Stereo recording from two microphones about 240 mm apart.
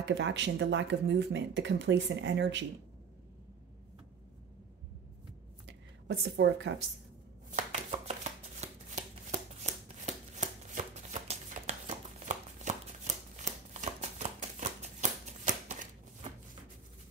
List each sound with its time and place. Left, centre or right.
0.1 s speech: right
5.7 s a sound: right
7.5 s chopping: right